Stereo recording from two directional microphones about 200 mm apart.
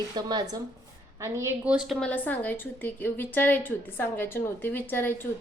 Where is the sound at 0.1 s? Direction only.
20° right (ahead or behind).